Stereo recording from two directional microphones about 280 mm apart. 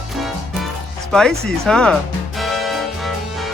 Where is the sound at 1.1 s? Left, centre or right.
Centre.